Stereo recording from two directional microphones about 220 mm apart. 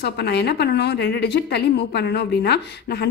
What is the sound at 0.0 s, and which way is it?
A woman's voice, 50° left (ahead or behind).